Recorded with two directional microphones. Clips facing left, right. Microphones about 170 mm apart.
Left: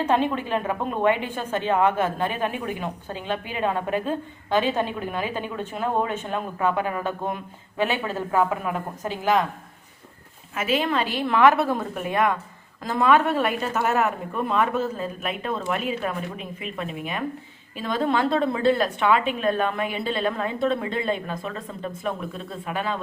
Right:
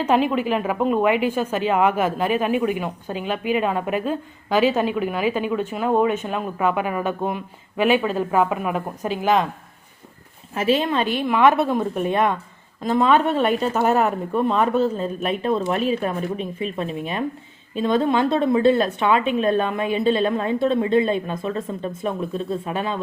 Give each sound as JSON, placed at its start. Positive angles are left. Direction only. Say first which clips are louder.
{"t": 0.0, "sound": "a woman's voice", "louder": "right 3 dB", "side_deg": -10}
{"t": 10.5, "sound": "speech", "louder": "right 5 dB", "side_deg": -35}
{"t": 10.8, "sound": "a woman's voice", "louder": "right 3 dB", "side_deg": -20}
{"t": 22.6, "sound": "a woman's voice", "louder": "right 2 dB", "side_deg": -20}